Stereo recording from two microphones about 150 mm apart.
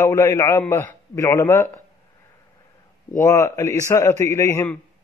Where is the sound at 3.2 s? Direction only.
20° left (ahead or behind).